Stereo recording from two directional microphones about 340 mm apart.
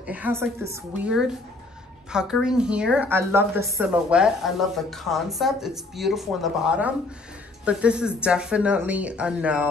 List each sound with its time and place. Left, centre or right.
0.0 s a woman's voice: centre